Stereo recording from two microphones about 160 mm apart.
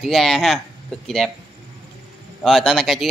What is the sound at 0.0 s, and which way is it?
Speech, centre (ahead or behind).